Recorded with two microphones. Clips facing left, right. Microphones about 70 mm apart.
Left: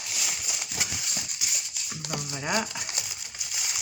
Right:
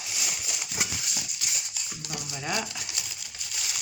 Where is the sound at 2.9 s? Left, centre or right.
Centre.